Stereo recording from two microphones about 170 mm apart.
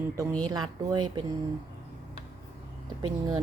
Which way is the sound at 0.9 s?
25° right (ahead or behind).